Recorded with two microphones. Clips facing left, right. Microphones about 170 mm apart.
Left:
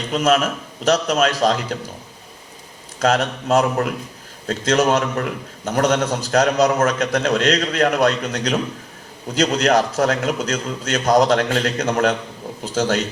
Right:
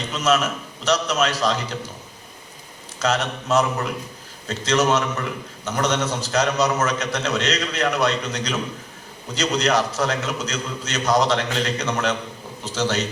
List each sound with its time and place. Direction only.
0.1 s a man's voice: 55° left (ahead or behind)
3.0 s a man's voice: 55° left (ahead or behind)